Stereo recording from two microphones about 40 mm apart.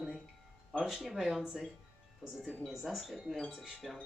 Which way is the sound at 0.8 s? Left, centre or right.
Centre.